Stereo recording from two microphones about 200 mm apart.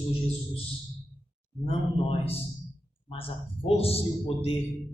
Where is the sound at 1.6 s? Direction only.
30° left (ahead or behind).